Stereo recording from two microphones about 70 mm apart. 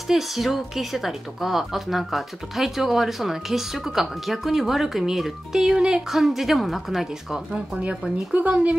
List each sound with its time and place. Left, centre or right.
0.1 s speech: centre
8.3 s speech: centre